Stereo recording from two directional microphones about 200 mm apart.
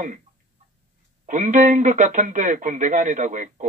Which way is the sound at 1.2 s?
40° right (ahead or behind).